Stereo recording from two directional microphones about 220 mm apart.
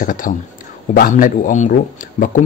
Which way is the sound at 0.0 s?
40° left (ahead or behind).